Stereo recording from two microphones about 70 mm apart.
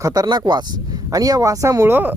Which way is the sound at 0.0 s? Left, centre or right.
Right.